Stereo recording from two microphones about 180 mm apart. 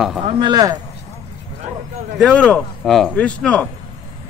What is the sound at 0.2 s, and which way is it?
Speech, 25° right (ahead or behind).